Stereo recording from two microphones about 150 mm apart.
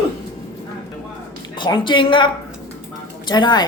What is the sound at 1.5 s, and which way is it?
Speech, 30° left (ahead or behind).